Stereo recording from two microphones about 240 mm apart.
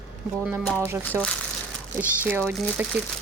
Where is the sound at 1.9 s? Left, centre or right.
Centre.